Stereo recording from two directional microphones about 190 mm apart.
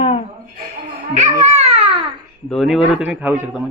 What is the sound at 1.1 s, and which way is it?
Speech, 35° right (ahead or behind).